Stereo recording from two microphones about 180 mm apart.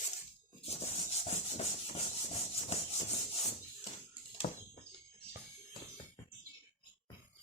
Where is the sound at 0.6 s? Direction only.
35° left (ahead or behind).